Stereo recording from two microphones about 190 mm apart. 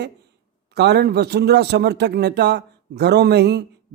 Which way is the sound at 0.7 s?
60° right (ahead or behind).